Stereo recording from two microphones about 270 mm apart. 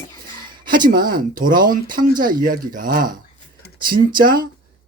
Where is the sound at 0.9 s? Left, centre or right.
Right.